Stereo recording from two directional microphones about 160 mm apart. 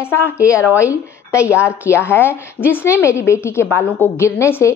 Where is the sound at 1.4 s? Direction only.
15° left (ahead or behind).